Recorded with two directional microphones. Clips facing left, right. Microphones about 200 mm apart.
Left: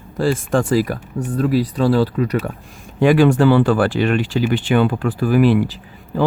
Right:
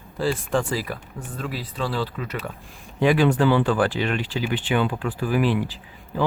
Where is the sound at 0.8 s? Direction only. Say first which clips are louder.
Left 11 dB; 60° left (ahead or behind).